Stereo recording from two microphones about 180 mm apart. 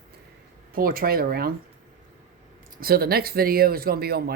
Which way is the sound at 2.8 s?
60° right (ahead or behind).